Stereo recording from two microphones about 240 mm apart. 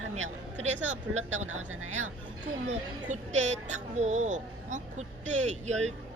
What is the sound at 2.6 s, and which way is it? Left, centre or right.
A woman's voice, right.